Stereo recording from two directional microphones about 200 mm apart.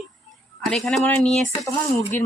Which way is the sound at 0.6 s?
5° left (ahead or behind).